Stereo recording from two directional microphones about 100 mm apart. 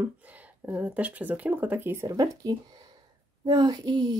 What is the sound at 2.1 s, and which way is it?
Speech, 35° right (ahead or behind).